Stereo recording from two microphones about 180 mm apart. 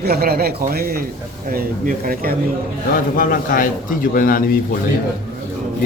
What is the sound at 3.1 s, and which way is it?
A man's voice, 50° left (ahead or behind).